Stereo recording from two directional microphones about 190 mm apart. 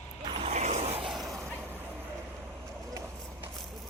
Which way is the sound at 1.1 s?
Centre (ahead or behind).